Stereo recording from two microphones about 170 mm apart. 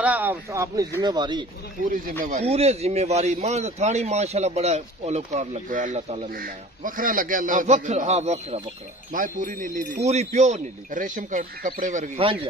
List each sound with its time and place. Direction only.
0.0 s speech: 10° right (ahead or behind); by 1.4 s 25° right (ahead or behind)
1.9 s speech: 50° right (ahead or behind)
2.4 s a man's voice: 35° right (ahead or behind)
6.3 s speech: 55° right (ahead or behind)
9.1 s speech: 50° right (ahead or behind)
12.2 s a man's voice: 30° right (ahead or behind)